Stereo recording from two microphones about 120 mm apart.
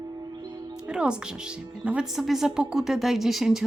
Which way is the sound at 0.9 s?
5° right (ahead or behind).